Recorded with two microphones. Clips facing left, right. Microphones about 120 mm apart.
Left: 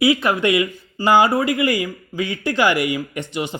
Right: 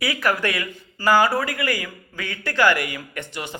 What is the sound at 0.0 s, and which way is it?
Speech, 25° left (ahead or behind).